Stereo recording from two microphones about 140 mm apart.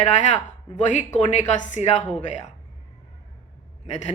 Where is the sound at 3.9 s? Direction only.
55° left (ahead or behind).